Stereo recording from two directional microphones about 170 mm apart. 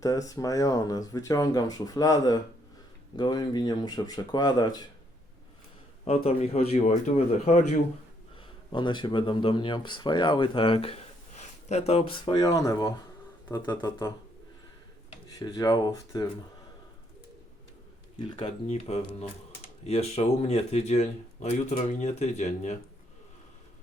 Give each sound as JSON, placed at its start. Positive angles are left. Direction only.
{"t": 0.0, "sound": "speech", "side_deg": 20}
{"t": 6.1, "sound": "speech", "side_deg": 35}
{"t": 8.4, "sound": "speech", "side_deg": 30}
{"t": 15.3, "sound": "speech", "side_deg": 20}
{"t": 18.2, "sound": "speech", "side_deg": 35}